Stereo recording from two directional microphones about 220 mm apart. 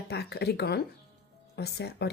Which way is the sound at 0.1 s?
45° left (ahead or behind).